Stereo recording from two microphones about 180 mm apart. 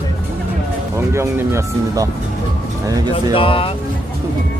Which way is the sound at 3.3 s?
30° left (ahead or behind).